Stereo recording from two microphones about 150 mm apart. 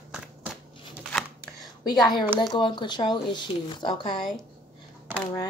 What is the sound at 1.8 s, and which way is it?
A woman's voice, 25° left (ahead or behind).